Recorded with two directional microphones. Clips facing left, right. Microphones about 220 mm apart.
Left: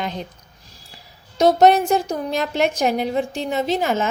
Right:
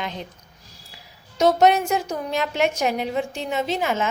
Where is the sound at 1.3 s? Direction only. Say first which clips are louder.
Left 3 dB; 35° left (ahead or behind).